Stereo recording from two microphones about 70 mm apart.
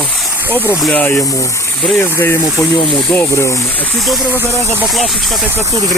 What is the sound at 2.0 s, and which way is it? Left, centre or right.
Speech, left.